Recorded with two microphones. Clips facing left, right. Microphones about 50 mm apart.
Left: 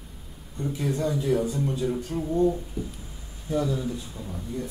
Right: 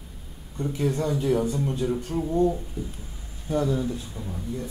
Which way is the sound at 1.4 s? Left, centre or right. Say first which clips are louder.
Right 1 dB; right.